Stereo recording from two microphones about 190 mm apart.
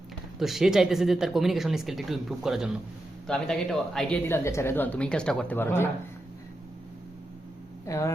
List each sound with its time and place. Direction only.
0.3 s a woman's voice: centre (ahead or behind)
7.9 s speech: 15° left (ahead or behind)